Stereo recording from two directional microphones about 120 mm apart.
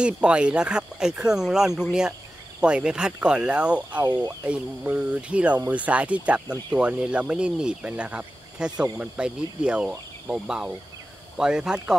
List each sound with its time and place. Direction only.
0.0 s speech: 10° right (ahead or behind)
4.0 s speech: 35° right (ahead or behind)
4.5 s speech: 10° right (ahead or behind)